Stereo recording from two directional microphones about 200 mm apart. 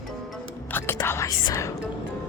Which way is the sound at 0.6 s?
10° left (ahead or behind).